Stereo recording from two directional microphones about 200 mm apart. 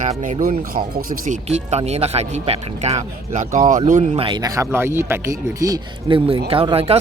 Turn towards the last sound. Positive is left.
turn(degrees=-30)  # may be behind; listen again after turning